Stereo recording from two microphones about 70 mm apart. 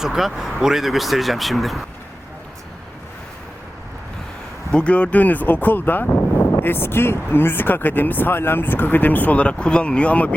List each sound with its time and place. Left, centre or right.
0.0 s speech: centre
4.7 s speech: centre